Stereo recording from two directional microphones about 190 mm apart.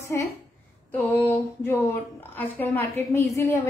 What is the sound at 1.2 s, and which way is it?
A woman's voice, 10° left (ahead or behind).